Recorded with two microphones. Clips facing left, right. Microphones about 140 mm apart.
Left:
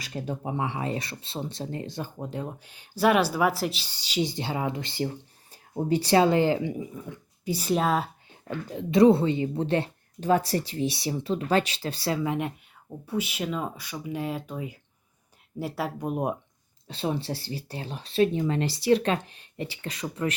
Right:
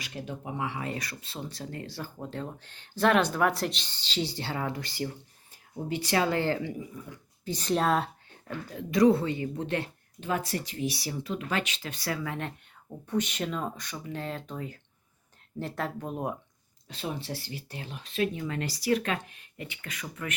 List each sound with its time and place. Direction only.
0.0 s speech: 35° left (ahead or behind)
7.4 s speech: 10° left (ahead or behind)
8.4 s speech: 25° left (ahead or behind)
16.9 s speech: 30° left (ahead or behind)